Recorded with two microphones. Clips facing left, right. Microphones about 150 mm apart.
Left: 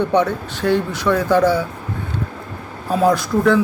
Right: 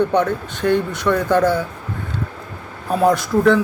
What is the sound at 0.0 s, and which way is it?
Speech, 20° left (ahead or behind).